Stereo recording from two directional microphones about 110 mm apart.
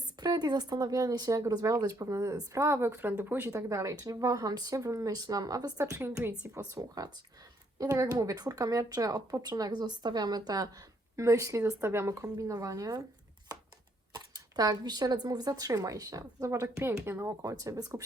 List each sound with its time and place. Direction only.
0.2 s speech: 40° right (ahead or behind); by 3.5 s 15° right (ahead or behind)
3.5 s speech: 30° right (ahead or behind)
14.1 s speech: 35° right (ahead or behind)
17.5 s speech: 35° right (ahead or behind)